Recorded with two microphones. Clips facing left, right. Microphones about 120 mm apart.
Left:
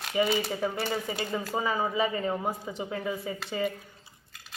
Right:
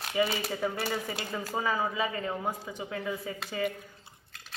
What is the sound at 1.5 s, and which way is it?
Speech, 15° left (ahead or behind).